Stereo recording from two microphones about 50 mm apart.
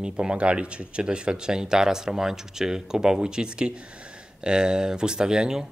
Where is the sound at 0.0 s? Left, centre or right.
Centre.